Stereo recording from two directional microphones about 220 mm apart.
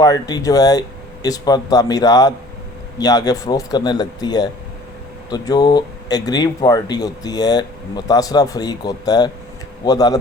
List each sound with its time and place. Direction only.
0.0 s speech: 15° left (ahead or behind)